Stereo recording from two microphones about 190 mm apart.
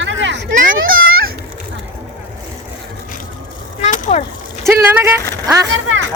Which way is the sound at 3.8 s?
40° left (ahead or behind).